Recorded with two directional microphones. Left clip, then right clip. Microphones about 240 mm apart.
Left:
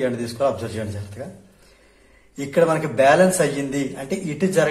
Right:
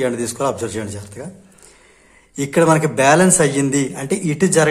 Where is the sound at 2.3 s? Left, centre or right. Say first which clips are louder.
Right 4 dB; right.